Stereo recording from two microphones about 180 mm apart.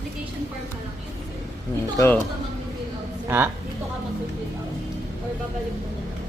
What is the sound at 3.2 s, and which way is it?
Speech, 10° right (ahead or behind).